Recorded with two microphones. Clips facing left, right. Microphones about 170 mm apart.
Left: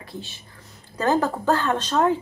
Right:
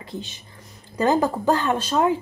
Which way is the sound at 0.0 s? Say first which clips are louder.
Right 3 dB; 20° right (ahead or behind).